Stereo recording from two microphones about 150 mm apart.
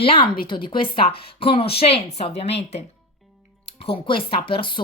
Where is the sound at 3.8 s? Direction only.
35° left (ahead or behind).